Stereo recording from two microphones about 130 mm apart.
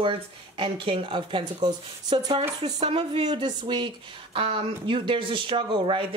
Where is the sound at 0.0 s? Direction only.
45° right (ahead or behind).